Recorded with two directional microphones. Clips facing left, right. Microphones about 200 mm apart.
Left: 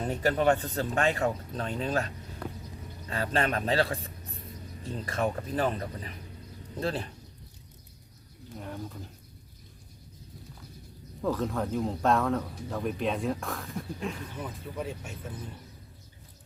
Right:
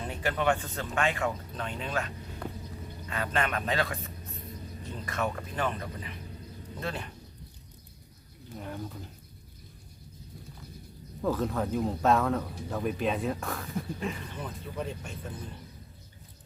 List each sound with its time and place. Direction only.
0.0 s speech: 40° left (ahead or behind)
8.5 s speech: centre (ahead or behind)
11.2 s speech: centre (ahead or behind)